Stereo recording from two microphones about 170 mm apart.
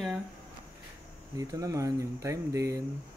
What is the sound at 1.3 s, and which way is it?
Speech, 20° right (ahead or behind).